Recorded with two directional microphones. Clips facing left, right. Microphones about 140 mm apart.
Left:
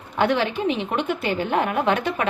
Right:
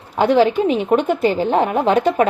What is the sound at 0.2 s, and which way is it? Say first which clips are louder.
A woman's voice: right 7 dB; 40° right (ahead or behind).